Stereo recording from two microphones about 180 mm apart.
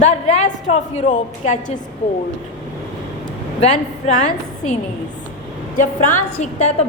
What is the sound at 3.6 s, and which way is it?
A woman's voice, 40° left (ahead or behind).